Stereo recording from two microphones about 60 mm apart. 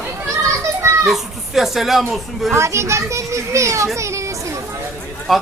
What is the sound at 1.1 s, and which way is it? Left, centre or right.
A man's voice, centre.